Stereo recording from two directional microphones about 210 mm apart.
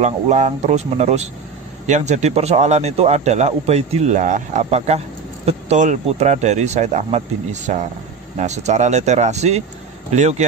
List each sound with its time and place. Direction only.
0.0 s speech: 35° right (ahead or behind)